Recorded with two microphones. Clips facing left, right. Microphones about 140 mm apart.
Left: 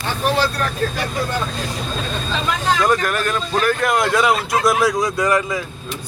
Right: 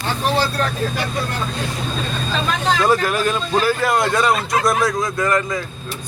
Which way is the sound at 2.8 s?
5° right (ahead or behind).